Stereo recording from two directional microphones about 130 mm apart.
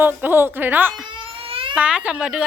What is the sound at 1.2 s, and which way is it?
Baby cry, 45° right (ahead or behind).